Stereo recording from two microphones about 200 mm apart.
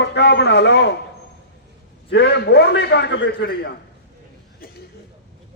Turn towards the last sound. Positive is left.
turn(degrees=55)  # may be behind; listen again after turning